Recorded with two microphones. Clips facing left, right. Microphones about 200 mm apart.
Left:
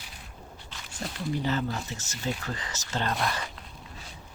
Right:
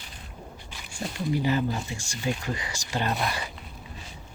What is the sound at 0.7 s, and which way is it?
Speech, 10° right (ahead or behind).